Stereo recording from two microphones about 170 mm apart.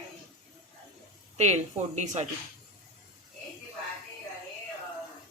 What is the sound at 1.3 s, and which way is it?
Speech, 40° right (ahead or behind).